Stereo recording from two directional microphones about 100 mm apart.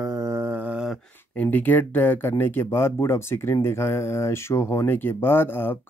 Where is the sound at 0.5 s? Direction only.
15° right (ahead or behind).